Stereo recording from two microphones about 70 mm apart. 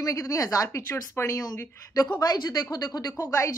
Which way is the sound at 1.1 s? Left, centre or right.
Left.